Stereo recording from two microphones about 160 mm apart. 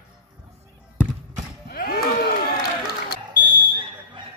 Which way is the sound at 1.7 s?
75° left (ahead or behind).